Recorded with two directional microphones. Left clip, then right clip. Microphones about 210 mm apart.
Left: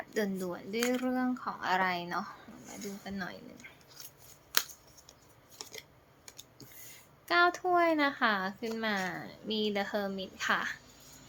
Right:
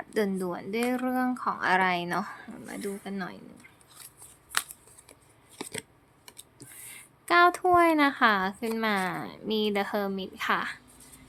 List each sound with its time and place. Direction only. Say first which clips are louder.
0.1 s a woman's voice: right 6 dB; 30° right (ahead or behind); by 2.9 s 45° right (ahead or behind)
3.0 s speech: right 3 dB; 30° right (ahead or behind)
7.3 s a woman's voice: right 6 dB; 30° right (ahead or behind)